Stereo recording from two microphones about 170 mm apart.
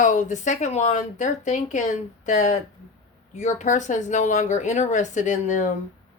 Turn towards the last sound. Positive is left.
turn(degrees=45)  # may be behind; listen again after turning